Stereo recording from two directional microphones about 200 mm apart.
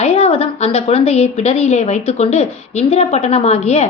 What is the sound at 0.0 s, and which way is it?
A woman's voice, 30° left (ahead or behind).